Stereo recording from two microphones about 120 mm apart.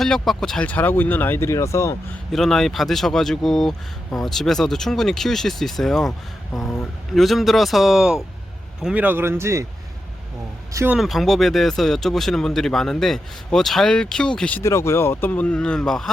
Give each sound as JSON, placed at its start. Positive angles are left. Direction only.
{"t": 0.0, "sound": "speech", "side_deg": 5}
{"t": 2.3, "sound": "speech", "side_deg": 5}
{"t": 10.8, "sound": "speech", "side_deg": -5}
{"t": 14.6, "sound": "speech", "side_deg": 25}